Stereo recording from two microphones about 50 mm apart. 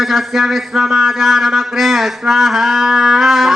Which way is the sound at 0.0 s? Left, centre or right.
Centre.